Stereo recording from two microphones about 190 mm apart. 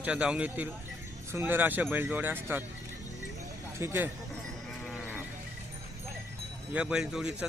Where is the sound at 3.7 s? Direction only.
15° right (ahead or behind).